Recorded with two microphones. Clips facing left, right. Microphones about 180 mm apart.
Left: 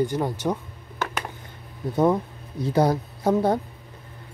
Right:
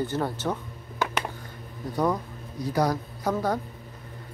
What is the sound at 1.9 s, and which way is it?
Speech, 25° left (ahead or behind).